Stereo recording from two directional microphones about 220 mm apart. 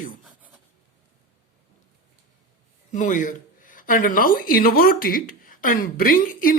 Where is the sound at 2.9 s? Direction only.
35° left (ahead or behind).